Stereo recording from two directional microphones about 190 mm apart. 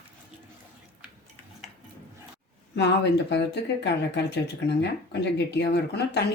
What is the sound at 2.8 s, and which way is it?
Speech, 65° left (ahead or behind).